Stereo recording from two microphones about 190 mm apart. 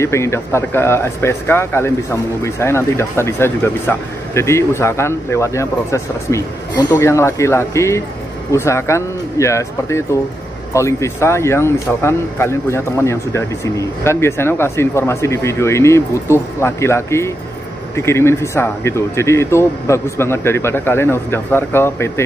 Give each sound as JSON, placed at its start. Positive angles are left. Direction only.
{"t": 0.0, "sound": "speech", "side_deg": 15}